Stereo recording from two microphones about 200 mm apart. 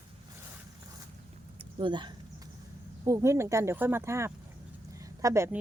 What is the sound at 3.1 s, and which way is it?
A woman's voice, 15° right (ahead or behind).